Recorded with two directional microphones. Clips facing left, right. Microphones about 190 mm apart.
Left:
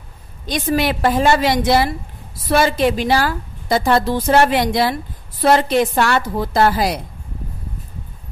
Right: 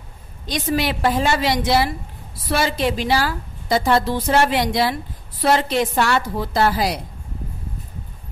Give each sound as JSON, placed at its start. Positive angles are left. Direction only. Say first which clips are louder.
{"t": 0.5, "sound": "a woman's voice", "louder": "left 3 dB", "side_deg": 50}